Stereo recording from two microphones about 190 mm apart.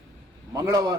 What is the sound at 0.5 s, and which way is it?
Speech, 20° right (ahead or behind).